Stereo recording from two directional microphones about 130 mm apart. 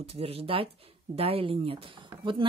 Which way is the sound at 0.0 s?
50° right (ahead or behind).